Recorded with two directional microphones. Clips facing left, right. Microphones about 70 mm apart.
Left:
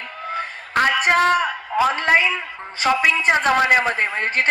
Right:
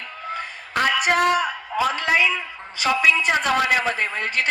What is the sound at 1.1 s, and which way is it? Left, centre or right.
Speech, left.